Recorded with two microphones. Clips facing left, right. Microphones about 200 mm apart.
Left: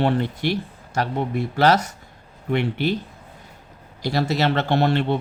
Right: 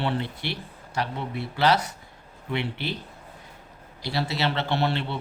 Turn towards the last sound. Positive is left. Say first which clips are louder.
# left 6 dB
turn(degrees=45)  # may be behind; listen again after turning